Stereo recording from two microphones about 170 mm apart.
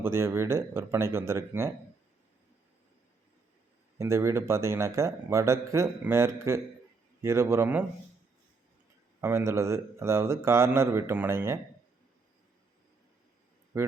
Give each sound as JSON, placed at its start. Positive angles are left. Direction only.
{"t": 0.0, "sound": "a man's voice", "side_deg": -15}
{"t": 3.9, "sound": "a man's voice", "side_deg": -15}
{"t": 9.2, "sound": "a man's voice", "side_deg": -15}
{"t": 13.7, "sound": "speech", "side_deg": -15}